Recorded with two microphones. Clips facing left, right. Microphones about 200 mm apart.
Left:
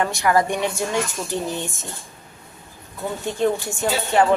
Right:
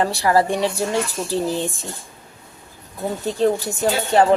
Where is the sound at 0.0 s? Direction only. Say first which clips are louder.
Right 2 dB; 35° right (ahead or behind).